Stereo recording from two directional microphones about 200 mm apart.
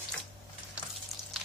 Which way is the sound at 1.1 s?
Centre (ahead or behind).